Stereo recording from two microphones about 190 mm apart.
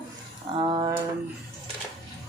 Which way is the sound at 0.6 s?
25° right (ahead or behind).